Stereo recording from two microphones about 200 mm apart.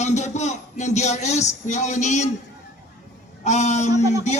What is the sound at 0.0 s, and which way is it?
Speech, 35° left (ahead or behind).